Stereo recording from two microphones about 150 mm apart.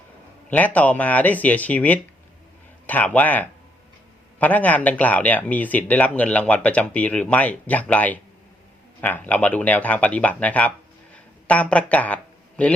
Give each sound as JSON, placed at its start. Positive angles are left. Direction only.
{"t": 0.5, "sound": "speech", "side_deg": 10}